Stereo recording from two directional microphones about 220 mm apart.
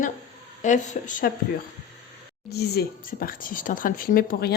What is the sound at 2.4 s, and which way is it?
Speech, 45° left (ahead or behind).